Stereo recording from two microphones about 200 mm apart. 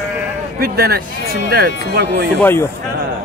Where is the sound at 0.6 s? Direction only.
50° right (ahead or behind).